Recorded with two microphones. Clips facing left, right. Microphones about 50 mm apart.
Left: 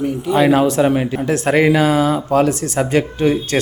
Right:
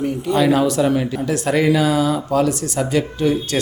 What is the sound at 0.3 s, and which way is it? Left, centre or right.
Speech, left.